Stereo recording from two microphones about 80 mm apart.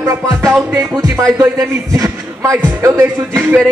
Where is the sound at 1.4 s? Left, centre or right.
Right.